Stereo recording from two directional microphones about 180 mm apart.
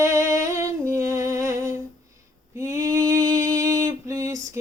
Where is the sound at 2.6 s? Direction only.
15° right (ahead or behind).